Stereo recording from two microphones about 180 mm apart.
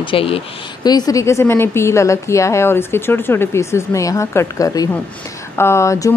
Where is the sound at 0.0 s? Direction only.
30° left (ahead or behind).